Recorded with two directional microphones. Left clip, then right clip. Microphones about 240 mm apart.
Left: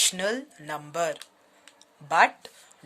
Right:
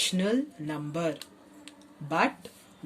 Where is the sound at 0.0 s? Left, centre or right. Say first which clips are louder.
Left 2 dB; left.